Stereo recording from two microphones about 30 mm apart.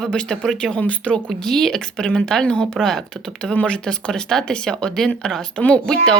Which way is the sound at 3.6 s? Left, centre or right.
Left.